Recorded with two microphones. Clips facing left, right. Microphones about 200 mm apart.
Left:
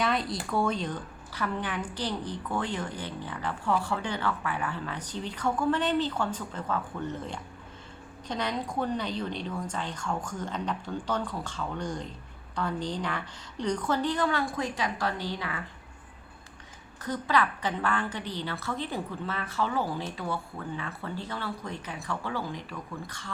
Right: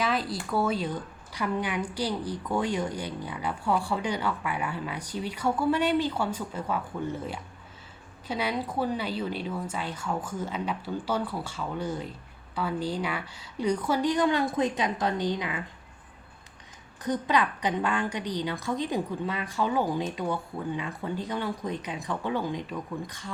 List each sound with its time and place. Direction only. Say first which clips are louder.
0.0 s a sound: even; centre (ahead or behind)
0.5 s a woman's voice: right 1 dB; 5° right (ahead or behind)
17.0 s a woman's voice: right 2 dB; 20° right (ahead or behind)